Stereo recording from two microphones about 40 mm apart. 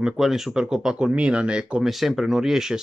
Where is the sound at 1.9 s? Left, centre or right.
Centre.